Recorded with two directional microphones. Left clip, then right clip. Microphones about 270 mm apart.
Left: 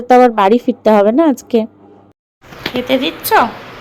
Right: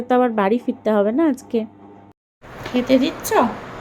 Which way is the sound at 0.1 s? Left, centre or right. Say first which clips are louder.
Left 9 dB; left.